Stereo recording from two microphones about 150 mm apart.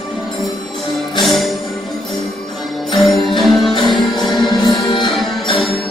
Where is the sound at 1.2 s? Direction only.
Centre (ahead or behind).